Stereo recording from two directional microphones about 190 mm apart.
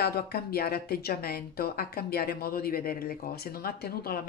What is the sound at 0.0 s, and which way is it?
Speech, 55° left (ahead or behind).